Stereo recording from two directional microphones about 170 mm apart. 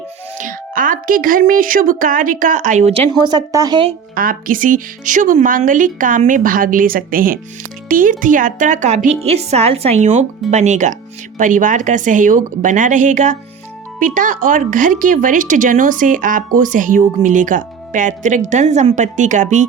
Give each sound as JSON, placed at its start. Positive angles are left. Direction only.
{"t": 0.3, "sound": "speech", "side_deg": -50}
{"t": 3.2, "sound": "speech", "side_deg": -20}
{"t": 4.1, "sound": "speech", "side_deg": -55}